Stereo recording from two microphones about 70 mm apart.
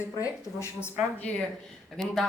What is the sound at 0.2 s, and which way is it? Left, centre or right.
Speech, left.